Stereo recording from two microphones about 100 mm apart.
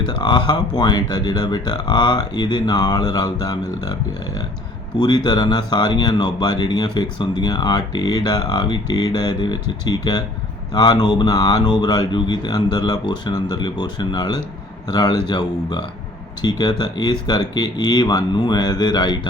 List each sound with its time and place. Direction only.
0.0 s speech: 50° left (ahead or behind)
4.9 s speech: 50° left (ahead or behind)